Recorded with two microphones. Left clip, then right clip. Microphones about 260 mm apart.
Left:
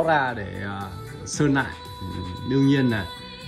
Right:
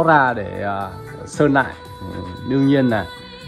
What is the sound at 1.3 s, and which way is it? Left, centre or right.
Speech, centre.